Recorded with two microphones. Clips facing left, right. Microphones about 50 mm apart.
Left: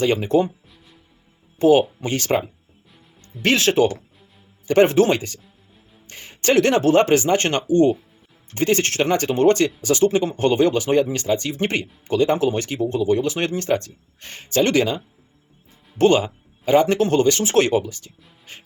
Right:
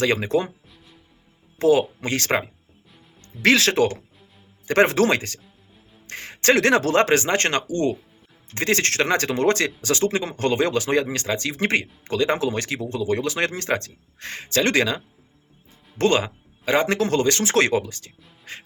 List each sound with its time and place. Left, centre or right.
0.2 s speech: right
2.0 s speech: right
3.4 s speech: right
4.6 s speech: right
11.8 s speech: right
16.0 s speech: right
16.8 s speech: right